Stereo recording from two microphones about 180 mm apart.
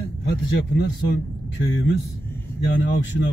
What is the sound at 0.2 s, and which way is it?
Speech, 70° left (ahead or behind).